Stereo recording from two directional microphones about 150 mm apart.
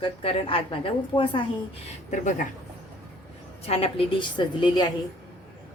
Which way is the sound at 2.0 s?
55° left (ahead or behind).